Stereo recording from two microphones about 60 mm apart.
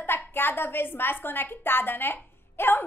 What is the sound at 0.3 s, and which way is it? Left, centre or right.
A woman's voice, left.